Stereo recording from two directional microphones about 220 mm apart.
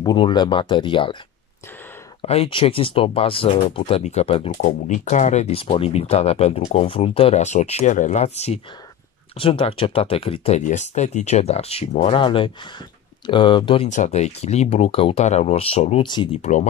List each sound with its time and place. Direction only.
0.0 s speech: 20° left (ahead or behind)
2.2 s speech: 25° left (ahead or behind)
13.8 s speech: 35° left (ahead or behind)
16.3 s speech: 35° left (ahead or behind)